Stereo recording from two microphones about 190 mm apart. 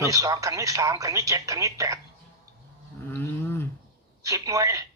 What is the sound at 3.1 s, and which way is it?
Roaring cats, 10° left (ahead or behind).